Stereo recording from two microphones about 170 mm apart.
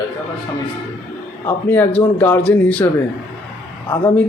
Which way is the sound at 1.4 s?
10° left (ahead or behind).